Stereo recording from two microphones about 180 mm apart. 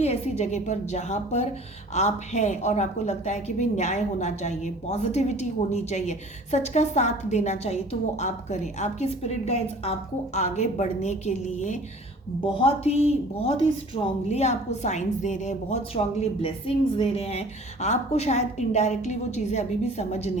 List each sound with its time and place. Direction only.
0.0 s a woman's voice: 35° left (ahead or behind)
12.5 s a woman's voice: 30° left (ahead or behind)